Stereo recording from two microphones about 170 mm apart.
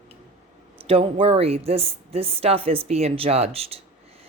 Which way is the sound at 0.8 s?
35° right (ahead or behind).